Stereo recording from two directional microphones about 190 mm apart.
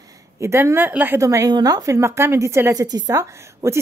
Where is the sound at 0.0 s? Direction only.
15° right (ahead or behind).